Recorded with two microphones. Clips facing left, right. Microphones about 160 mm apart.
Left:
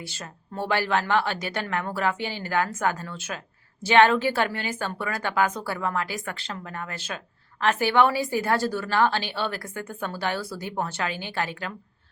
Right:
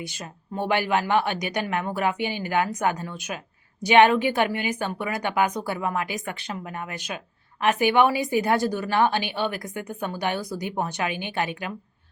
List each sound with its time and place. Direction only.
0.0 s a woman's voice: 15° right (ahead or behind)